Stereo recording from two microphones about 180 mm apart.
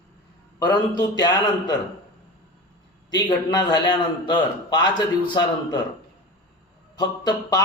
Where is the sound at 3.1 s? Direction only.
25° left (ahead or behind).